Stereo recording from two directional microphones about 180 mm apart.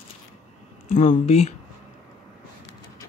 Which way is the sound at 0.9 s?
45° left (ahead or behind).